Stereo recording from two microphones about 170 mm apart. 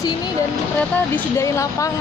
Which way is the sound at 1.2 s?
15° left (ahead or behind).